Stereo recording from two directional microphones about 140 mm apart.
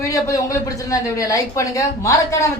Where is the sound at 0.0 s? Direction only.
25° left (ahead or behind).